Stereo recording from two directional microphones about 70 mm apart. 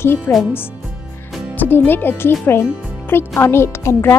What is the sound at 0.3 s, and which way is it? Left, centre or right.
Speech, left.